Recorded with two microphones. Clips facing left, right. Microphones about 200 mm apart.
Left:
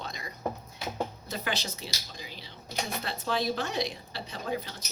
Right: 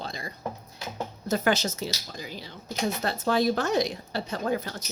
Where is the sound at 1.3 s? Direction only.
45° right (ahead or behind).